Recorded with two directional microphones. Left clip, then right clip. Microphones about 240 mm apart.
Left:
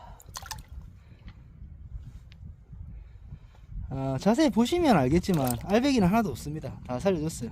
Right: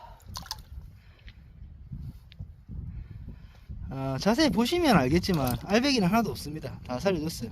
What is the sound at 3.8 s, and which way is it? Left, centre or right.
Speech, centre.